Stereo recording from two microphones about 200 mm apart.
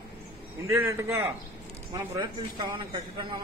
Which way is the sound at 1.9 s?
25° right (ahead or behind).